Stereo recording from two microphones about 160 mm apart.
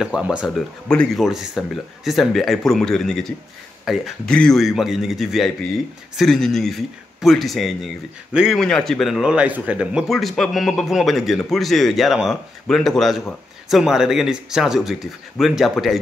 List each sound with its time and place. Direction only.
0.0 s speech: 5° right (ahead or behind)